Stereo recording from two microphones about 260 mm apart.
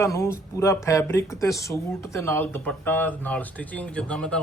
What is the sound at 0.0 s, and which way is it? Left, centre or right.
Speech, centre.